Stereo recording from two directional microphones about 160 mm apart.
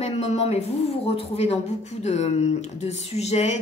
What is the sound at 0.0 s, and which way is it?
Speech, 40° left (ahead or behind).